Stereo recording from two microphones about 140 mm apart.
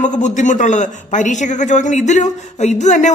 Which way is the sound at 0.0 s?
60° left (ahead or behind).